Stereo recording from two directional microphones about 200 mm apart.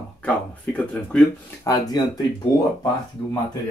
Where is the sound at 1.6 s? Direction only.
20° left (ahead or behind).